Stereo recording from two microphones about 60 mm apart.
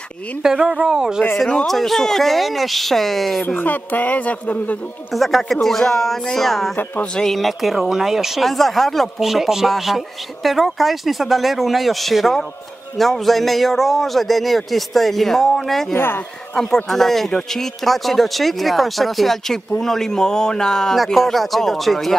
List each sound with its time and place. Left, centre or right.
0.4 s speech: centre
1.7 s speech: centre
3.4 s a woman's voice: left
5.1 s speech: centre